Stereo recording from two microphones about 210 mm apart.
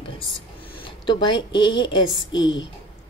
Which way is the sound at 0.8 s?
20° left (ahead or behind).